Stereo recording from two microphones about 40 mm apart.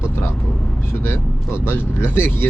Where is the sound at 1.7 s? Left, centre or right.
Left.